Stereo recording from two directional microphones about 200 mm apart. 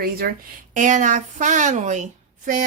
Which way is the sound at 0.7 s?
40° right (ahead or behind).